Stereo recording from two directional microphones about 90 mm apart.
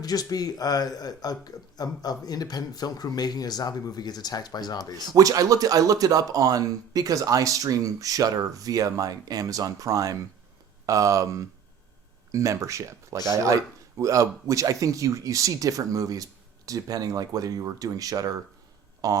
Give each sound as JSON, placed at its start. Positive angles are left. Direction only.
{"t": 0.0, "sound": "speech", "side_deg": 45}
{"t": 5.1, "sound": "speech", "side_deg": -40}
{"t": 12.3, "sound": "speech", "side_deg": -35}